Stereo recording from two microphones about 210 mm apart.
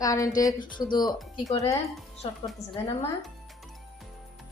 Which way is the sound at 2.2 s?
25° left (ahead or behind).